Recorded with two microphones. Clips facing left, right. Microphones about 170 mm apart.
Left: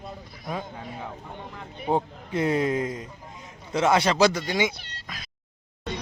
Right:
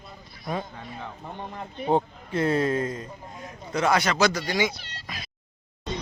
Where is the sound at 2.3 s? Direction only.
15° left (ahead or behind).